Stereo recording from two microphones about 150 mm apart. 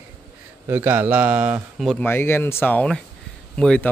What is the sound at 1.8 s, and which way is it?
Speech, centre (ahead or behind).